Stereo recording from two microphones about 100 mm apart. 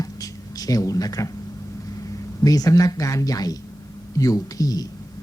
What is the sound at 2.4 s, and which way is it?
Speech, 35° left (ahead or behind).